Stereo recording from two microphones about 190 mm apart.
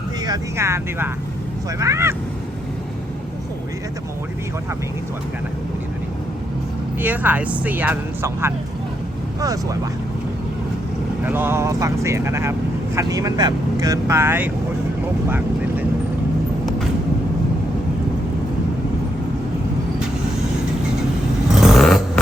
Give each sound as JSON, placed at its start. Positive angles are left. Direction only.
{"t": 0.3, "sound": "speech", "side_deg": -15}
{"t": 7.0, "sound": "speech", "side_deg": -10}
{"t": 11.2, "sound": "speech", "side_deg": -10}
{"t": 15.3, "sound": "vehicle", "side_deg": -10}
{"t": 21.6, "sound": "vehicle", "side_deg": 0}